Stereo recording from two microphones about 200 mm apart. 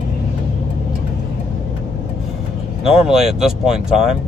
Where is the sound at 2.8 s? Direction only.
Centre (ahead or behind).